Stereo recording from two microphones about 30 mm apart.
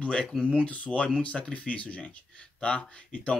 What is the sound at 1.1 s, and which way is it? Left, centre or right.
Speech, left.